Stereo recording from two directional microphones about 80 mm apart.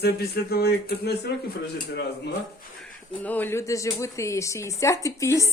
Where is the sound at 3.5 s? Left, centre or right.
Left.